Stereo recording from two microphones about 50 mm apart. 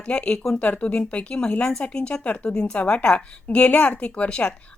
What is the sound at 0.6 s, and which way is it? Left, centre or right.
A woman's voice, left.